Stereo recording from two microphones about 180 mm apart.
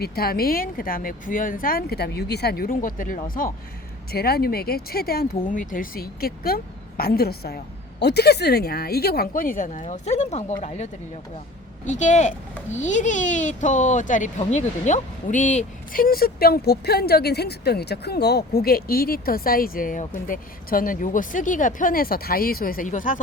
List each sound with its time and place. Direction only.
0.0 s a woman's voice: 55° left (ahead or behind); by 10.8 s 40° left (ahead or behind)
11.9 s speech: 40° left (ahead or behind)